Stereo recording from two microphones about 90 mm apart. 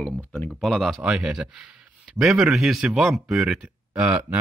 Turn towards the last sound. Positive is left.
turn(degrees=-20)  # may be behind; listen again after turning